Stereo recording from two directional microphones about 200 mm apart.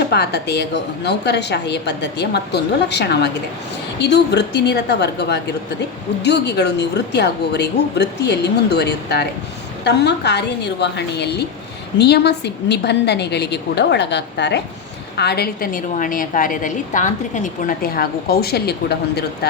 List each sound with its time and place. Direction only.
0.1 s a woman's voice: 55° left (ahead or behind)